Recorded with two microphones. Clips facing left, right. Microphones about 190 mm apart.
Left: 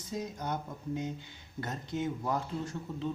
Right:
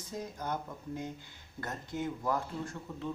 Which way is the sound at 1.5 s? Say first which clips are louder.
Left 2 dB; 25° left (ahead or behind).